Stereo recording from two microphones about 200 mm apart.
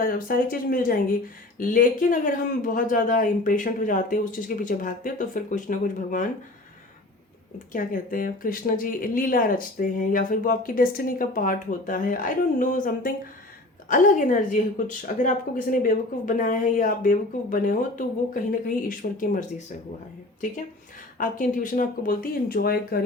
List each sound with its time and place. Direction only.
0.0 s speech: 45° left (ahead or behind)
7.7 s speech: 45° left (ahead or behind)
21.2 s speech: 40° left (ahead or behind)